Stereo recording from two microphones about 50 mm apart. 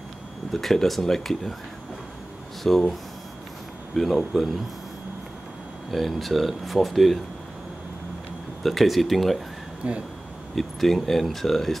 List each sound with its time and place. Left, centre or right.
0.5 s speech: centre
2.6 s speech: centre
3.9 s speech: centre
5.9 s speech: centre
8.6 s speech: centre
9.8 s speech: right
10.5 s speech: centre